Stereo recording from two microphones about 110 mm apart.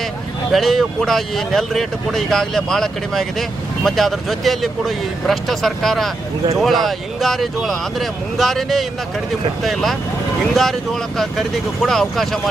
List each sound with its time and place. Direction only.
0.5 s speech: centre (ahead or behind)